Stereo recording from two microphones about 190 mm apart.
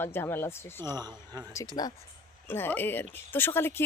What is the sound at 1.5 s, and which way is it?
Speech, 20° left (ahead or behind).